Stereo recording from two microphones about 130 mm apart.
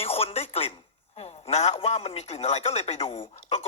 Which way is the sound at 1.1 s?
55° left (ahead or behind).